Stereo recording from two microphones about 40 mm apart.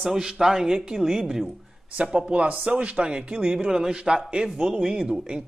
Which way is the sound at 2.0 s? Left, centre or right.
Right.